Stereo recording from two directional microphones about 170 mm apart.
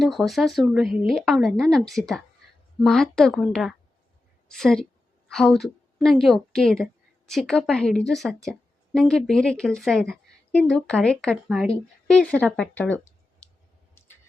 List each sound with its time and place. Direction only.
0.0 s a woman's voice: centre (ahead or behind)